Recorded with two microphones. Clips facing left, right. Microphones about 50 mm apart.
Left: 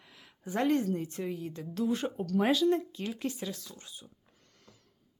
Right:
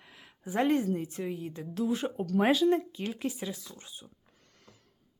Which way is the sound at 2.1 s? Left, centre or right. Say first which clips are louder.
Right 2 dB; right.